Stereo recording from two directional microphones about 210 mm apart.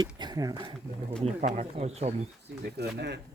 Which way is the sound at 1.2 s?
35° right (ahead or behind).